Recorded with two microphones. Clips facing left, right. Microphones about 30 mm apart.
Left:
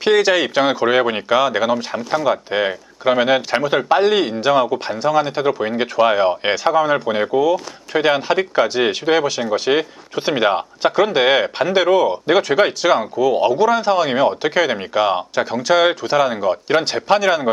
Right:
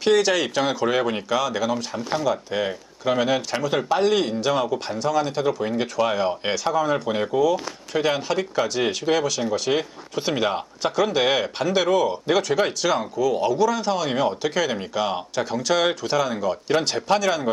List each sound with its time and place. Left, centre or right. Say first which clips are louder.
0.0 s speech: left 4 dB; left
2.0 s speech: left 5 dB; centre
2.2 s speech: left 6 dB; left